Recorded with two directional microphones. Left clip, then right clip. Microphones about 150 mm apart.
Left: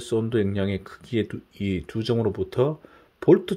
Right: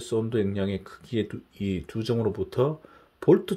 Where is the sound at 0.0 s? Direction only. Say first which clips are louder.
Left 2 dB; 25° left (ahead or behind).